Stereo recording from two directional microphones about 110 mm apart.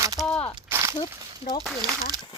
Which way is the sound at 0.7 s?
30° right (ahead or behind).